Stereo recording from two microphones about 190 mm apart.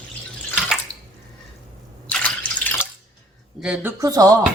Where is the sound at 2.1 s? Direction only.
5° left (ahead or behind).